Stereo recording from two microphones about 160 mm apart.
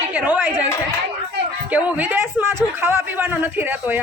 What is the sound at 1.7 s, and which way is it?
A man's voice, 10° right (ahead or behind).